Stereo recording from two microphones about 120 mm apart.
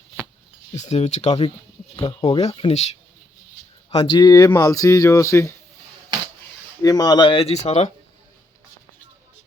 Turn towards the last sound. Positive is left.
turn(degrees=65)  # may be behind; listen again after turning